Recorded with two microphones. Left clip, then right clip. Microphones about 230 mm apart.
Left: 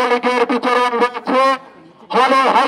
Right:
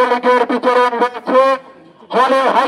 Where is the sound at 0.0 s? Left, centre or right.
Left.